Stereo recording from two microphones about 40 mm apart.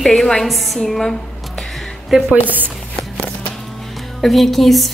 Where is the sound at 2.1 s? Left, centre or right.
Centre.